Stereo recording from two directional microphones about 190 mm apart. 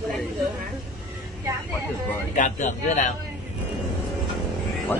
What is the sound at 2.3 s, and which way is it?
Speech, 40° left (ahead or behind).